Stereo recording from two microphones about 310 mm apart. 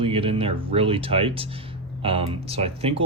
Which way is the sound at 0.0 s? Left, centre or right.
Centre.